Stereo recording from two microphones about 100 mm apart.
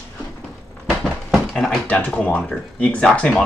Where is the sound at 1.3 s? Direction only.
5° left (ahead or behind).